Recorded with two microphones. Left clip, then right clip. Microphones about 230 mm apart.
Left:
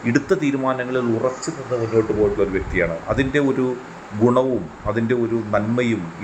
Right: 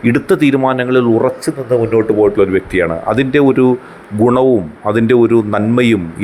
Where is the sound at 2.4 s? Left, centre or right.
Right.